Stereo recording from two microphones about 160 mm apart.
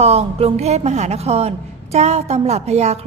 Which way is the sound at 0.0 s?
40° right (ahead or behind).